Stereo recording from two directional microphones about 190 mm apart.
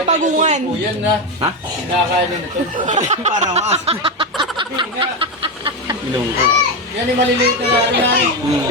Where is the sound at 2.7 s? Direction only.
40° right (ahead or behind).